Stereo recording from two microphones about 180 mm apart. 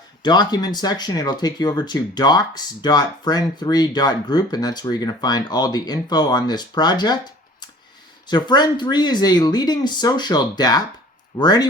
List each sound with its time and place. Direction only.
0.2 s speech: 25° left (ahead or behind)
8.3 s speech: 25° left (ahead or behind)